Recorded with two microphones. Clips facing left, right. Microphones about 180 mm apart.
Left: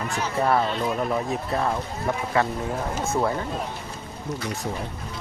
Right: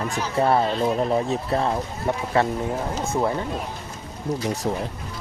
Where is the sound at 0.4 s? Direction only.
30° right (ahead or behind).